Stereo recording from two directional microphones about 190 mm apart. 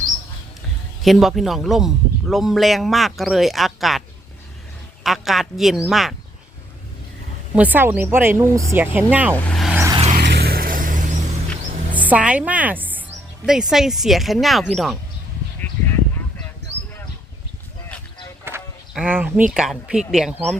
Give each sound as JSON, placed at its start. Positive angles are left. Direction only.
{"t": 1.0, "sound": "a man's voice", "side_deg": 0}
{"t": 5.0, "sound": "a man's voice", "side_deg": 0}
{"t": 7.5, "sound": "speech", "side_deg": -10}
{"t": 9.3, "sound": "vehicle", "side_deg": 0}
{"t": 9.9, "sound": "vehicle", "side_deg": -30}
{"t": 10.2, "sound": "vehicle", "side_deg": -55}
{"t": 11.9, "sound": "a woman's voice", "side_deg": -10}
{"t": 18.4, "sound": "speech", "side_deg": -10}